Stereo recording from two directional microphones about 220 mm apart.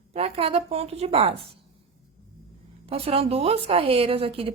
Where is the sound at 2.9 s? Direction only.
25° right (ahead or behind).